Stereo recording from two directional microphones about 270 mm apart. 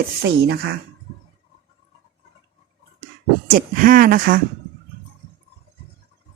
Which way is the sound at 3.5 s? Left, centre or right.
Right.